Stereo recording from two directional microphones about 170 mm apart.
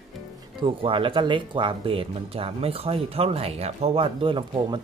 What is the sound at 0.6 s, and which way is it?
Speech, 30° right (ahead or behind).